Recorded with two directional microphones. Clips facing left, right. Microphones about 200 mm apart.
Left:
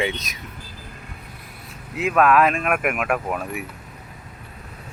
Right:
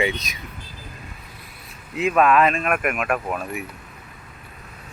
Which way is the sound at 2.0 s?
5° left (ahead or behind).